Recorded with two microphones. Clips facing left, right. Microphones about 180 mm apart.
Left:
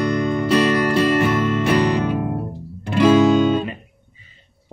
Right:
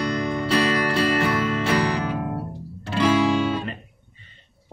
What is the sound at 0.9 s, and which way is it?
Music, 15° left (ahead or behind).